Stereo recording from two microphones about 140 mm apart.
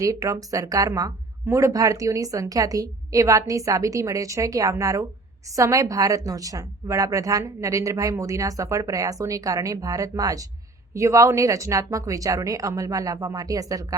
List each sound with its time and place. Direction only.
0.0 s speech: 20° right (ahead or behind)